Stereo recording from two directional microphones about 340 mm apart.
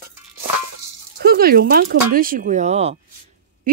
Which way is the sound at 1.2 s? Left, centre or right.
Right.